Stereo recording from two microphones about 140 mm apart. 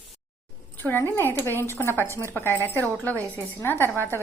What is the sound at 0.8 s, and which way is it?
Speech, 15° left (ahead or behind).